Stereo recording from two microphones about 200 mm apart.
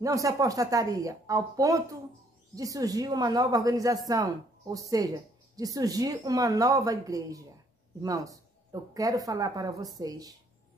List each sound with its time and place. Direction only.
0.0 s a woman's voice: 15° right (ahead or behind)